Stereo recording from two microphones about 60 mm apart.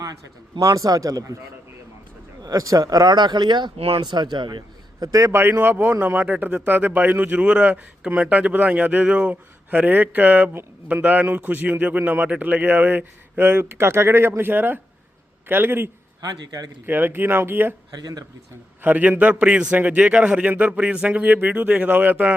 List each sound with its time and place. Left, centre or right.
0.6 s speech: right
2.4 s speech: right
4.9 s a man's voice: right
5.3 s a man's voice: right
16.2 s speech: right
16.8 s speech: right
18.0 s speech: right
18.8 s a man's voice: right
21.1 s a man's voice: right